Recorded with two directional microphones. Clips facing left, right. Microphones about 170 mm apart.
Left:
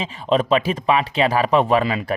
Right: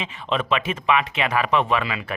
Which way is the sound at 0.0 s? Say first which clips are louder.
Left 6 dB; 35° left (ahead or behind).